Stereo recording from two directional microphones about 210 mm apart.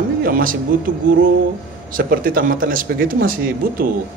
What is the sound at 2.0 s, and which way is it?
Speech, 40° right (ahead or behind).